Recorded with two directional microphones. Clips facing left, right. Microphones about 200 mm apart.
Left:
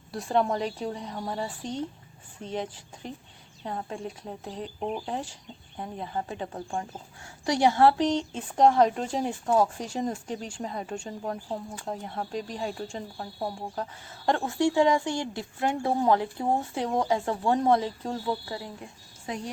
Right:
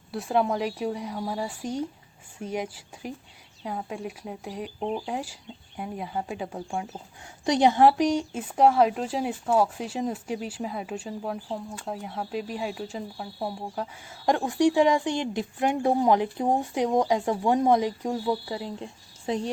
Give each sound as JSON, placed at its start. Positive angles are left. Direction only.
{"t": 0.1, "sound": "a woman's voice", "side_deg": -5}
{"t": 7.4, "sound": "a woman's voice", "side_deg": -20}